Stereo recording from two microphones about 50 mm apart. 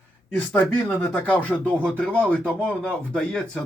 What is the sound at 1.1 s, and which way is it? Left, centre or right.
A man's voice, left.